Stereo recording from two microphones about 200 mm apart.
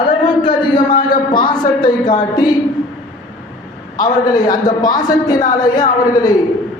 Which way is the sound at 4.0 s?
20° left (ahead or behind).